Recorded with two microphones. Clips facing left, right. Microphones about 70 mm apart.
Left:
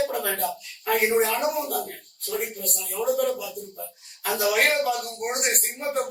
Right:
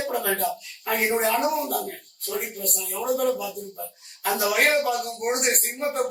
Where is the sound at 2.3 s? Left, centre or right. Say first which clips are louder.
Even; centre.